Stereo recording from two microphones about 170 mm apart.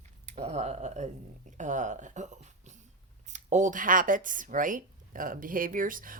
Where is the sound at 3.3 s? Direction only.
45° right (ahead or behind).